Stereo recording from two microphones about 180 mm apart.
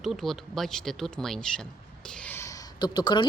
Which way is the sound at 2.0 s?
5° left (ahead or behind).